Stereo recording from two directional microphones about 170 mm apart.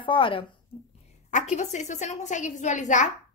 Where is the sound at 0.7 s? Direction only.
5° right (ahead or behind).